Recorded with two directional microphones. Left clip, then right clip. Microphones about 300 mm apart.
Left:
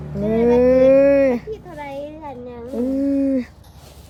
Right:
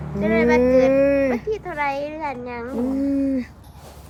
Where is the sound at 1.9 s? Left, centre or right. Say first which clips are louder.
Right 4 dB; right.